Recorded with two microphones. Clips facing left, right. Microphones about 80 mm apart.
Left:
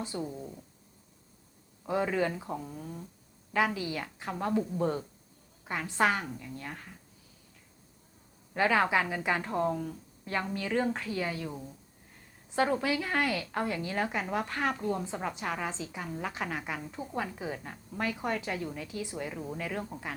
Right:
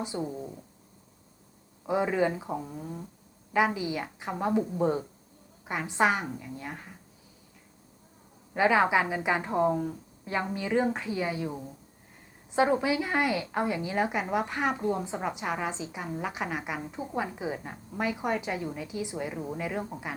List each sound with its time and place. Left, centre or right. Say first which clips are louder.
0.0 s a woman's voice: right 3 dB; centre
1.9 s a woman's voice: right 3 dB; centre
8.5 s a woman's voice: right 3 dB; centre